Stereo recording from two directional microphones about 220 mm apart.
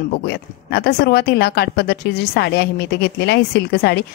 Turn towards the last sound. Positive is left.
turn(degrees=50)  # may be behind; listen again after turning